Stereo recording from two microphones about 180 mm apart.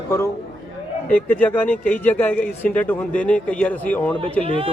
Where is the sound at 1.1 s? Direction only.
10° left (ahead or behind).